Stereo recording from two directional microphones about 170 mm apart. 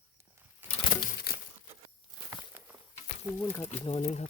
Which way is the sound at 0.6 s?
10° right (ahead or behind).